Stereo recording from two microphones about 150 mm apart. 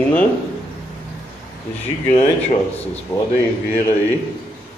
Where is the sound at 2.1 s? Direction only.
45° left (ahead or behind).